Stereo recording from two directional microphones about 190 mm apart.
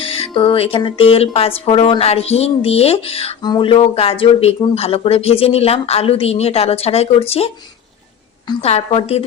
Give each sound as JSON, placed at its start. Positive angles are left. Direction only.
{"t": 0.0, "sound": "speech", "side_deg": 30}
{"t": 8.6, "sound": "speech", "side_deg": 35}